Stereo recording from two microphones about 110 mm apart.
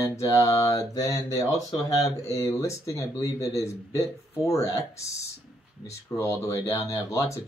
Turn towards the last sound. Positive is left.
turn(degrees=30)  # may be behind; listen again after turning